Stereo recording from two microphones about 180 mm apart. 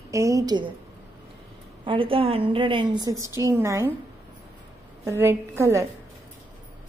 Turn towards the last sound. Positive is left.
turn(degrees=-15)  # may be behind; listen again after turning